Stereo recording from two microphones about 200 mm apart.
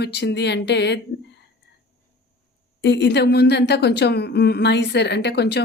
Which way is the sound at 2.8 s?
60° left (ahead or behind).